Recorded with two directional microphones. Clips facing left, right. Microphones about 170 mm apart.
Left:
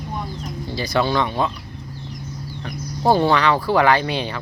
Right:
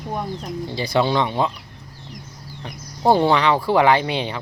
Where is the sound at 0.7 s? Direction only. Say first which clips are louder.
Right 1 dB; 20° right (ahead or behind).